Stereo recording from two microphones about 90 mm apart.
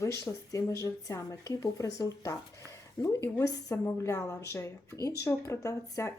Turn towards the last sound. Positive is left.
turn(degrees=40)  # may be behind; listen again after turning